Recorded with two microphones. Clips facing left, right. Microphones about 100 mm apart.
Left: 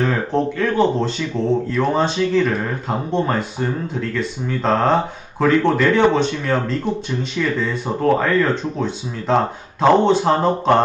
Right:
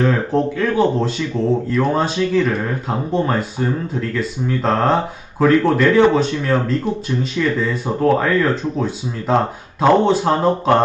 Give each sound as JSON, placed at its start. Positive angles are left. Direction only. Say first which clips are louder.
{"t": 0.0, "sound": "speech", "louder": "right 2 dB", "side_deg": 0}